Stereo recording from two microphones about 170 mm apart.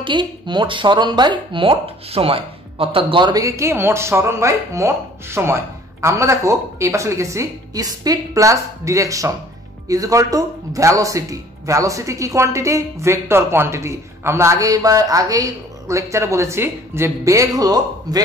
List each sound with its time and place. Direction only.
0.0 s speech: 30° right (ahead or behind)